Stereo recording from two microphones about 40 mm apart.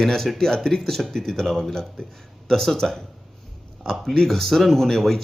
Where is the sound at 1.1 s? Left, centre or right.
Centre.